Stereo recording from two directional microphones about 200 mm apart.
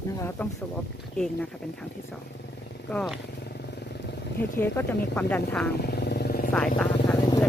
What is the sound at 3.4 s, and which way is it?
Vehicle, 55° left (ahead or behind).